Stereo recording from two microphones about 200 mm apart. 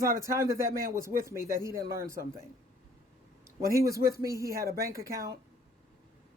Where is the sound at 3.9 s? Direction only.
15° right (ahead or behind).